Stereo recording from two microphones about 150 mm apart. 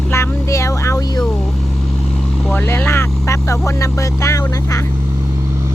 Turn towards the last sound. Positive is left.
turn(degrees=20)  # may be behind; listen again after turning